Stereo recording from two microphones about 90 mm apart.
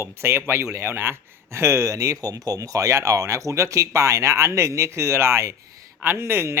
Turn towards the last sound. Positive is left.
turn(degrees=-30)  # may be behind; listen again after turning